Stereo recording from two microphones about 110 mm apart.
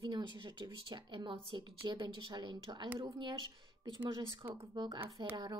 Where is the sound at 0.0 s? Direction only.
45° right (ahead or behind).